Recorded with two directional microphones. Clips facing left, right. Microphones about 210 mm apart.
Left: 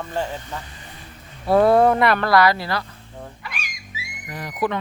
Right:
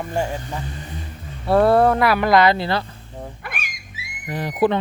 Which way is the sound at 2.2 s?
20° right (ahead or behind).